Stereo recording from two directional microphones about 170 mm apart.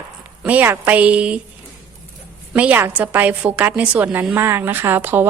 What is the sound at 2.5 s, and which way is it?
A woman's voice, 10° right (ahead or behind).